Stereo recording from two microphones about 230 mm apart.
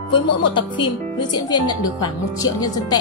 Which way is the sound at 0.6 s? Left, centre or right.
Centre.